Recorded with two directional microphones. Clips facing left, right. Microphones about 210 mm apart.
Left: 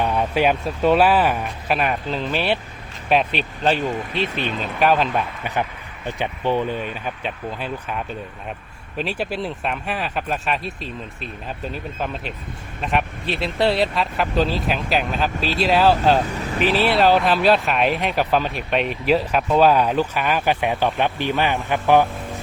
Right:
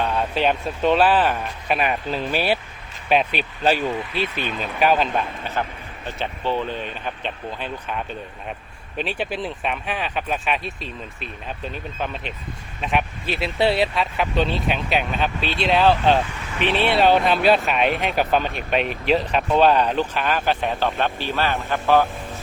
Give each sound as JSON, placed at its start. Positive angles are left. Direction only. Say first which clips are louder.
{"t": 0.0, "sound": "speech", "louder": "left 2 dB", "side_deg": 10}
{"t": 4.1, "sound": "speech", "louder": "left 2 dB", "side_deg": 25}
{"t": 4.6, "sound": "speech", "louder": "even", "side_deg": 0}
{"t": 5.4, "sound": "speech", "louder": "left 2 dB", "side_deg": 15}
{"t": 16.3, "sound": "vehicle", "louder": "left 7 dB", "side_deg": 35}
{"t": 16.6, "sound": "speech", "louder": "left 1 dB", "side_deg": 0}